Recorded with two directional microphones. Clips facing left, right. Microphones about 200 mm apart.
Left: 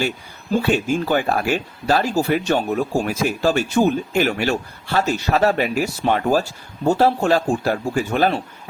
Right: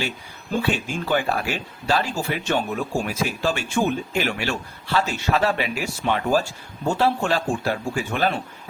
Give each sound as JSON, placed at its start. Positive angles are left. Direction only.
{"t": 0.6, "sound": "speech", "side_deg": 45}